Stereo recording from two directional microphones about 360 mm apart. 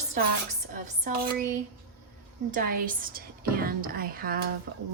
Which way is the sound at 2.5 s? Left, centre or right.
Right.